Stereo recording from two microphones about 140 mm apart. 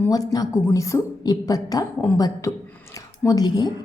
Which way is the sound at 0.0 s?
25° left (ahead or behind).